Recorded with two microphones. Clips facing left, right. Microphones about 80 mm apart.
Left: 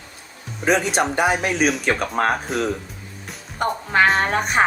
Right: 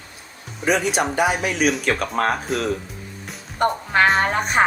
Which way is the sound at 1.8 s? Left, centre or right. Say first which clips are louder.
Left 1 dB; left.